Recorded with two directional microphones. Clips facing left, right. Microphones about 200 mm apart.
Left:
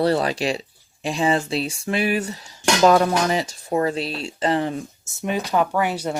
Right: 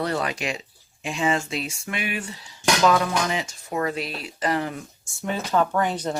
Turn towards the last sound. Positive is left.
turn(degrees=10)  # may be behind; listen again after turning